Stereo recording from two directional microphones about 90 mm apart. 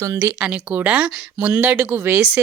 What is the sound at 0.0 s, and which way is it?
Speech, 35° right (ahead or behind).